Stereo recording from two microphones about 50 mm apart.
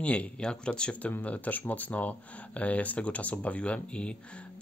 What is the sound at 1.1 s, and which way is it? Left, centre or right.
Speech, left.